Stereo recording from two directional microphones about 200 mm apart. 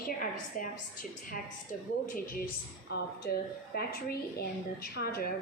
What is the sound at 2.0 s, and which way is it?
A woman's voice, 45° left (ahead or behind).